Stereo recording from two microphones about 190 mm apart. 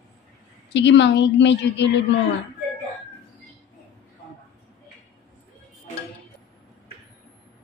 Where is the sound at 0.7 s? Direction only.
70° left (ahead or behind).